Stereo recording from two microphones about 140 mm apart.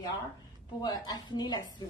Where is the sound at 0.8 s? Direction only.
30° left (ahead or behind).